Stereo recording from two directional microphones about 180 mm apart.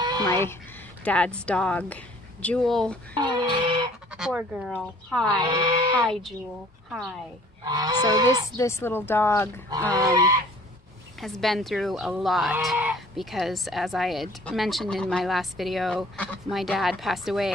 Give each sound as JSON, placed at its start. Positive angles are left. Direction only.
{"t": 0.0, "sound": "a sound", "side_deg": -25}
{"t": 1.0, "sound": "speech", "side_deg": 5}
{"t": 3.2, "sound": "speech", "side_deg": -25}
{"t": 4.1, "sound": "speech", "side_deg": -5}
{"t": 5.3, "sound": "goose", "side_deg": -25}
{"t": 6.9, "sound": "speech", "side_deg": 0}
{"t": 7.6, "sound": "goose", "side_deg": -20}
{"t": 8.5, "sound": "speech", "side_deg": 15}
{"t": 9.9, "sound": "goose", "side_deg": -20}
{"t": 11.4, "sound": "speech", "side_deg": 0}